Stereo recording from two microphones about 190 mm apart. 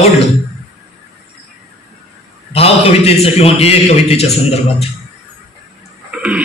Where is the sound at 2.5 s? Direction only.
30° left (ahead or behind).